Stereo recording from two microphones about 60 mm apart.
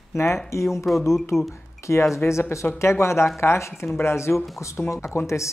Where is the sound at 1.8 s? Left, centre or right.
Left.